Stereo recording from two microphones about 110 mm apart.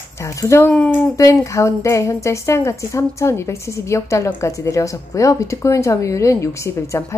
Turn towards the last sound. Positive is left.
turn(degrees=25)  # may be behind; listen again after turning